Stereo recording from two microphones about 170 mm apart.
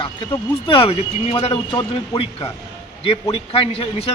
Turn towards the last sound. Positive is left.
turn(degrees=35)  # may be behind; listen again after turning